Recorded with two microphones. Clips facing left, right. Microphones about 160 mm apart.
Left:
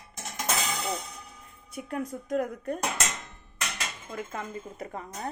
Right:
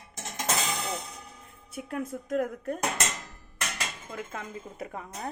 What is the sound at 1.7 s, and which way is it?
A woman's voice, 5° right (ahead or behind).